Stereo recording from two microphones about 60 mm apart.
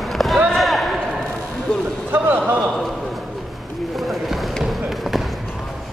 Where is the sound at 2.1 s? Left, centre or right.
Right.